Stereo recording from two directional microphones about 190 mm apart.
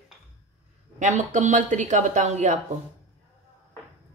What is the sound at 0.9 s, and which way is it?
Speech, 40° right (ahead or behind).